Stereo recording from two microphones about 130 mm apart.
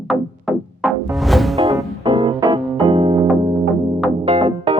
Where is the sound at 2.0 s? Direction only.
35° right (ahead or behind).